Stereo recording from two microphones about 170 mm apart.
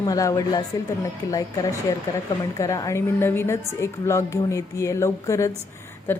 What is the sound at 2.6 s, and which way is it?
A woman's voice, 20° left (ahead or behind).